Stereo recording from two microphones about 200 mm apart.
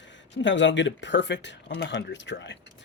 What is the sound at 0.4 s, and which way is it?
Speech, 65° left (ahead or behind).